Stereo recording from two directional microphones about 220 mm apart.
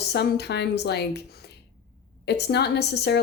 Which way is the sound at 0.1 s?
50° left (ahead or behind).